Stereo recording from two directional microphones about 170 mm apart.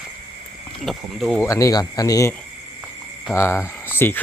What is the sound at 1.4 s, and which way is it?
Speech, 20° left (ahead or behind).